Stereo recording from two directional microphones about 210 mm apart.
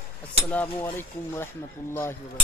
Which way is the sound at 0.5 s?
10° left (ahead or behind).